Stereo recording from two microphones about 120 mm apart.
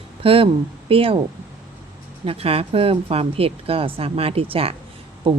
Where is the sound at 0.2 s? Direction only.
50° right (ahead or behind).